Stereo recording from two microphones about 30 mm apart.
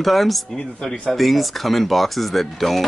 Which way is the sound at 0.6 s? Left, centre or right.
Left.